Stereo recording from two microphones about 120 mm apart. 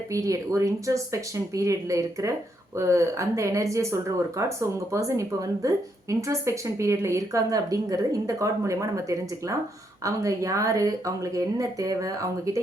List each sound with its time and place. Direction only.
0.1 s speech: 25° right (ahead or behind)